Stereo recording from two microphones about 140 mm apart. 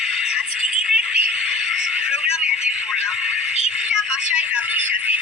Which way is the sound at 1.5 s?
5° right (ahead or behind).